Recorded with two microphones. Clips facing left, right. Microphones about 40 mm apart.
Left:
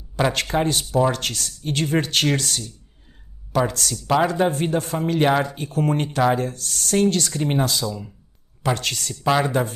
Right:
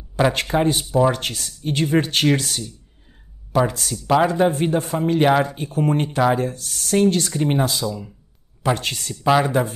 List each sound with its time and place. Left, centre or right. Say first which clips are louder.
0.3 s speech: right 2 dB; centre
3.9 s speech: right 2 dB; centre
4.5 s speech: right 2 dB; centre
7.8 s speech: right 2 dB; centre
8.7 s speech: even; right
9.2 s speech: right 3 dB; centre
9.5 s speech: right 2 dB; centre